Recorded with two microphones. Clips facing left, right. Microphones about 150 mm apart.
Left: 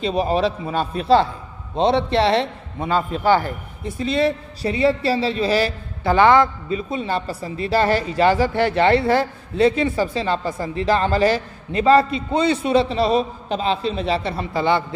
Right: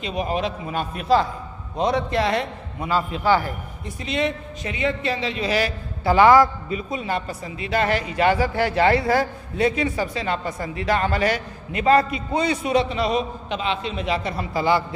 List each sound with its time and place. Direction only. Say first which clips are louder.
0.0 s a man's voice: left 5 dB; 35° left (ahead or behind)